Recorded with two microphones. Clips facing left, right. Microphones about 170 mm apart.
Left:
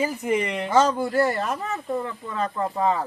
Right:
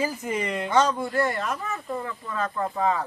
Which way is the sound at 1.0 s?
30° left (ahead or behind).